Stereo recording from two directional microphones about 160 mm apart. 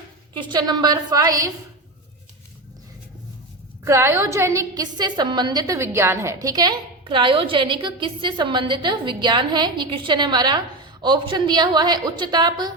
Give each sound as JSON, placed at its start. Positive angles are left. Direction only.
{"t": 0.3, "sound": "a woman's voice", "side_deg": -30}
{"t": 3.8, "sound": "a woman's voice", "side_deg": -15}